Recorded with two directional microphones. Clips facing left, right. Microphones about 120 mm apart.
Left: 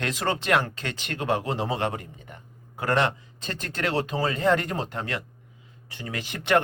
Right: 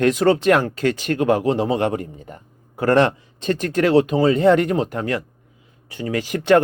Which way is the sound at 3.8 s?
30° right (ahead or behind).